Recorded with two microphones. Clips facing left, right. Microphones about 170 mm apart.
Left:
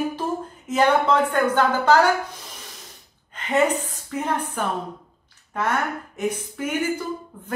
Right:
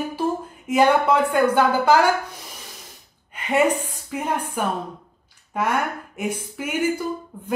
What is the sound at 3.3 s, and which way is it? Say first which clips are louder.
A woman's voice: right 1 dB; 10° right (ahead or behind).